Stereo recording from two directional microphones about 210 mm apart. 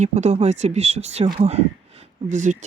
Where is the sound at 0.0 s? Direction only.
35° right (ahead or behind).